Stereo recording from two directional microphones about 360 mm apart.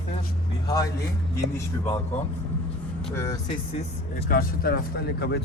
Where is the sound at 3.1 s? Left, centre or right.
Centre.